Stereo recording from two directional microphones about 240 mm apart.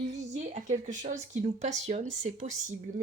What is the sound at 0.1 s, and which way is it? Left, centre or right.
A woman's voice, right.